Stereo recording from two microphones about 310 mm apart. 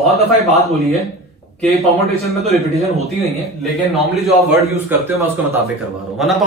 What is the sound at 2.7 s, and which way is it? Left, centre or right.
Speech, centre.